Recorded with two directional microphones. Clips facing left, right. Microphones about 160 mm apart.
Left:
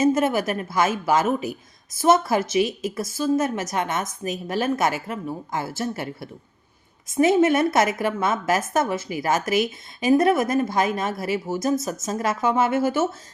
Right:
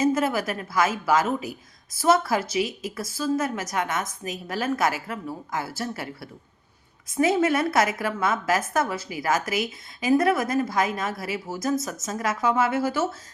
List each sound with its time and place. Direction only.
0.0 s a woman's voice: 25° left (ahead or behind)